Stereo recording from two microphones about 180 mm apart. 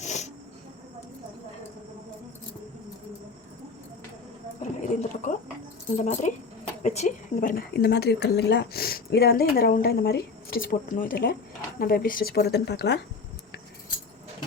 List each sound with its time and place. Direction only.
0.0 s snake: 40° left (ahead or behind)
4.8 s horse: 45° left (ahead or behind)
6.0 s speech: 40° left (ahead or behind)
7.5 s speech: 65° left (ahead or behind)